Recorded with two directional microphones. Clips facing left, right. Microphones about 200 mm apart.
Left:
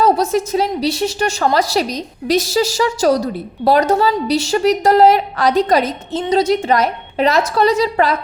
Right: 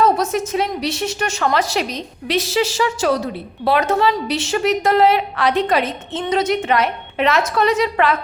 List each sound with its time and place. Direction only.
0.0 s a woman's voice: 35° left (ahead or behind)